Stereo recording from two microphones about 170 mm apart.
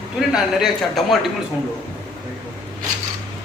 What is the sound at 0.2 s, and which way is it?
A man's voice, 5° right (ahead or behind).